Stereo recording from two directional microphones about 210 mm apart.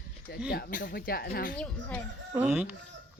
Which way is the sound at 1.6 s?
5° left (ahead or behind).